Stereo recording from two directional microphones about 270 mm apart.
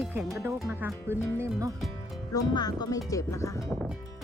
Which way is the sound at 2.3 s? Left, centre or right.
Centre.